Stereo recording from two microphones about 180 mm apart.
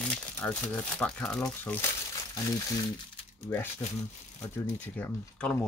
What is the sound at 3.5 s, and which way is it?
Speech, 20° left (ahead or behind).